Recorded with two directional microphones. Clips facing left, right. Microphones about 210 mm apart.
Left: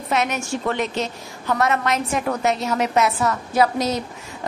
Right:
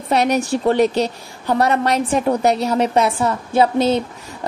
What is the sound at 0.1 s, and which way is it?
A woman's voice, 35° right (ahead or behind).